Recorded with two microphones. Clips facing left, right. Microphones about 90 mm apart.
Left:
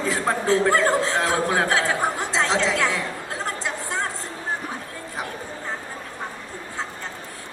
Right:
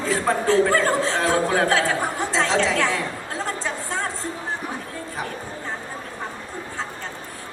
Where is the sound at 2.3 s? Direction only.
20° left (ahead or behind).